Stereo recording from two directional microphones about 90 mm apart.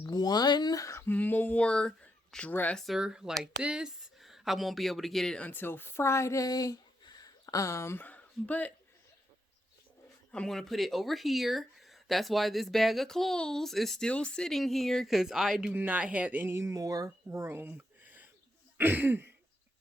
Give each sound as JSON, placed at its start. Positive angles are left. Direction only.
{"t": 0.1, "sound": "a sound", "side_deg": 50}
{"t": 1.0, "sound": "a sound", "side_deg": 20}
{"t": 2.7, "sound": "speech", "side_deg": 0}
{"t": 5.4, "sound": "speech", "side_deg": 20}
{"t": 10.3, "sound": "speech", "side_deg": 5}
{"t": 15.7, "sound": "speech", "side_deg": -20}